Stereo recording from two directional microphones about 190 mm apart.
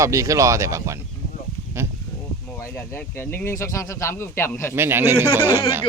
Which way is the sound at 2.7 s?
10° left (ahead or behind).